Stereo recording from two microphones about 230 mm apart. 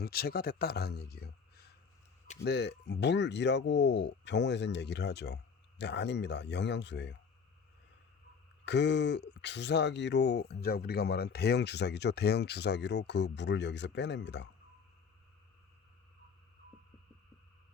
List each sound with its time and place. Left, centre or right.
0.0 s a man's voice: left
8.6 s speech: left